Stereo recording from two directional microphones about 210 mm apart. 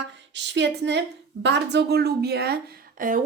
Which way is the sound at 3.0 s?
40° right (ahead or behind).